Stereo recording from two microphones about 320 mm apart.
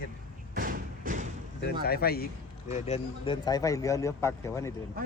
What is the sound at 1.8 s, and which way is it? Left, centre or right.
Speech, left.